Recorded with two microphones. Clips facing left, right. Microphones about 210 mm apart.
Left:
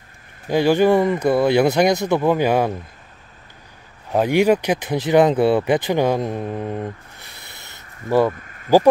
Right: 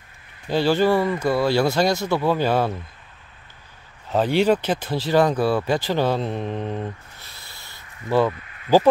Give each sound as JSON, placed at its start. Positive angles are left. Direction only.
{"t": 0.5, "sound": "speech", "side_deg": 15}
{"t": 4.1, "sound": "speech", "side_deg": 10}
{"t": 7.3, "sound": "a sound", "side_deg": 20}
{"t": 8.3, "sound": "speech", "side_deg": 45}